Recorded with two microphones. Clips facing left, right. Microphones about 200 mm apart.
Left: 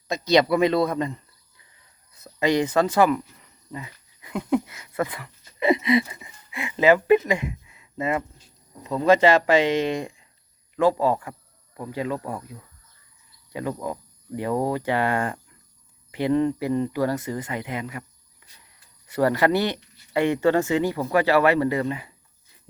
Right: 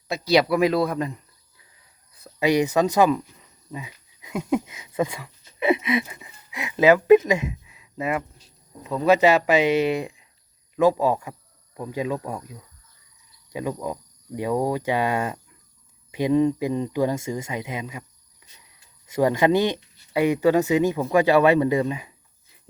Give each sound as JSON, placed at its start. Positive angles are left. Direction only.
{"t": 0.1, "sound": "a man's voice", "side_deg": -5}
{"t": 2.4, "sound": "a man's voice", "side_deg": -10}
{"t": 19.1, "sound": "speech", "side_deg": -15}